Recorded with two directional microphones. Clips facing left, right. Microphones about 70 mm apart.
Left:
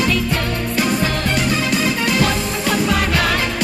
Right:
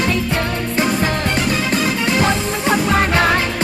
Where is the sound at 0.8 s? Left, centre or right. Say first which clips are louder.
Right 1 dB; right.